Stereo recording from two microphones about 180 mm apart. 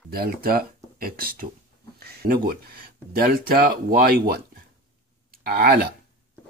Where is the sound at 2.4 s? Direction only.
55° right (ahead or behind).